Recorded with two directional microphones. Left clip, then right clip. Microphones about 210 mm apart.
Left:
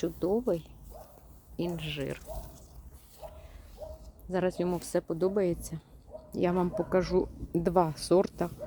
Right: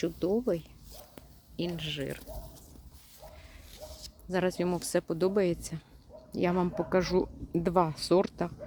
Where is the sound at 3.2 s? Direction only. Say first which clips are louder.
Left 5 dB; 20° left (ahead or behind).